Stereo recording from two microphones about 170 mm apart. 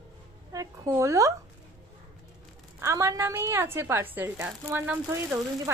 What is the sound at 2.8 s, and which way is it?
Speech, 20° right (ahead or behind).